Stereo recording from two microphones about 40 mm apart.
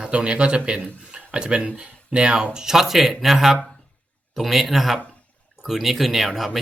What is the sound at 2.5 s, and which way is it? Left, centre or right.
Speech, centre.